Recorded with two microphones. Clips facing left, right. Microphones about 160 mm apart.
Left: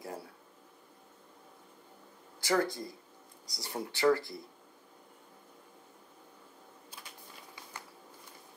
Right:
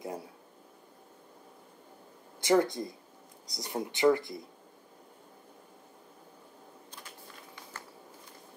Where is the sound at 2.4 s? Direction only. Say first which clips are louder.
Right 5 dB; 20° right (ahead or behind).